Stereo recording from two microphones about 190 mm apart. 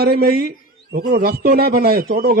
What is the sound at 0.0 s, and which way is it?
A man's voice, 55° right (ahead or behind).